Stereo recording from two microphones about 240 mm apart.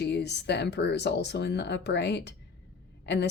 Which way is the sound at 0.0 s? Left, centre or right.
Left.